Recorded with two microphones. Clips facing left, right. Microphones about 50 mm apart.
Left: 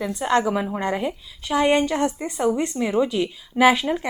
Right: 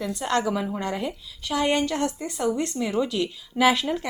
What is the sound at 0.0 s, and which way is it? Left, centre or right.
A woman's voice, centre.